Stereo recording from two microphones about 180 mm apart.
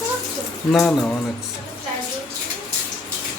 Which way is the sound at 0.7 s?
5° left (ahead or behind).